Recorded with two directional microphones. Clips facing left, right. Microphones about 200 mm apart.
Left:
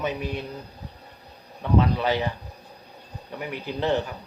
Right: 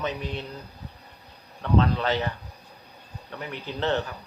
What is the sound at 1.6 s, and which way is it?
Speech, 10° left (ahead or behind).